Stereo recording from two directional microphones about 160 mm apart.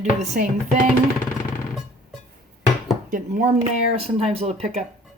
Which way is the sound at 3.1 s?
55° right (ahead or behind).